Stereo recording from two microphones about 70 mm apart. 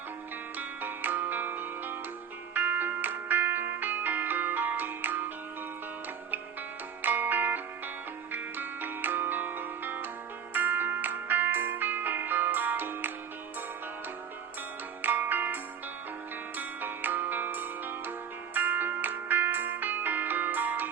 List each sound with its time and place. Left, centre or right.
0.8 s music: right
7.0 s music: right
15.0 s music: right